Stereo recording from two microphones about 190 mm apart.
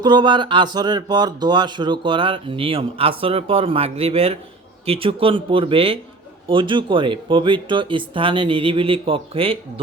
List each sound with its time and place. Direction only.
0.0 s speech: 25° right (ahead or behind)